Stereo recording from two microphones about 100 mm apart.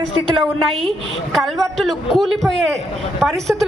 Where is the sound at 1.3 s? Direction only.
Centre (ahead or behind).